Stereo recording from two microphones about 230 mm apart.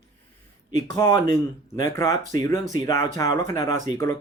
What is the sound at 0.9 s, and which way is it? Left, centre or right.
Speech, centre.